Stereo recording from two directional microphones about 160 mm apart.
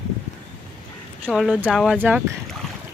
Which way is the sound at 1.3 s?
Centre (ahead or behind).